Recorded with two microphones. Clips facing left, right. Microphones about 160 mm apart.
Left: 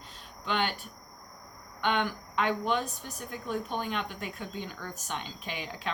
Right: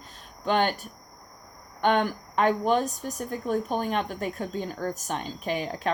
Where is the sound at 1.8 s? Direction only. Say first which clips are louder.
Right 6 dB; 45° right (ahead or behind).